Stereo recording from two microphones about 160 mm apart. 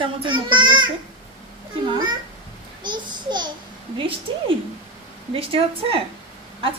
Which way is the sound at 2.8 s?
30° right (ahead or behind).